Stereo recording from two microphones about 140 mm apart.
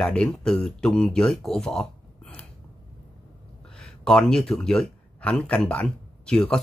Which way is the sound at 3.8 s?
5° left (ahead or behind).